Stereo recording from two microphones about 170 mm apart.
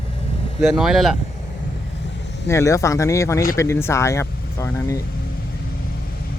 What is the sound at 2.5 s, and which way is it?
Speech, 15° left (ahead or behind).